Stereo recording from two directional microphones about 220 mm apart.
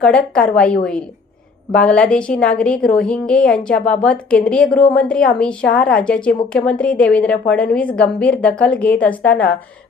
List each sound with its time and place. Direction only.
0.0 s a woman's voice: 5° left (ahead or behind)